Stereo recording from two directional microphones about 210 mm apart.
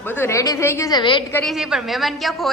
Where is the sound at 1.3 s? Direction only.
Centre (ahead or behind).